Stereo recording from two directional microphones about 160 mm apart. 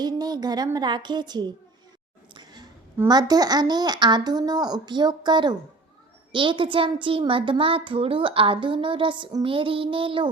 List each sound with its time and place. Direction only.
0.0 s speech: 25° right (ahead or behind)
2.3 s a sound: 25° right (ahead or behind)
3.1 s a woman's voice: 25° right (ahead or behind)